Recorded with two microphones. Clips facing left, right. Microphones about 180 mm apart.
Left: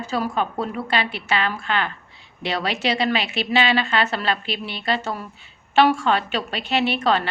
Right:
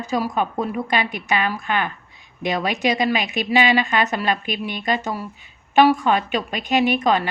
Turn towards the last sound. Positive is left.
turn(degrees=-15)  # may be behind; listen again after turning